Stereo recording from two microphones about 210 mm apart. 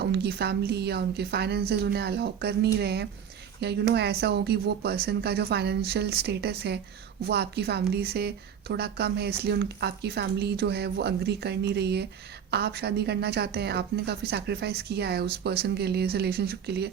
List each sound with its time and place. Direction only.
0.0 s a woman's voice: 50° right (ahead or behind)